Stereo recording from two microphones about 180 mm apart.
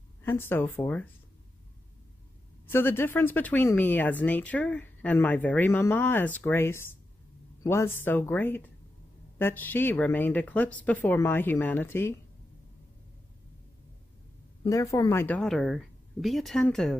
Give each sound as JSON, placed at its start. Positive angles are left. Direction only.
{"t": 0.2, "sound": "speech", "side_deg": 10}
{"t": 2.6, "sound": "speech", "side_deg": 10}
{"t": 14.6, "sound": "speech", "side_deg": 20}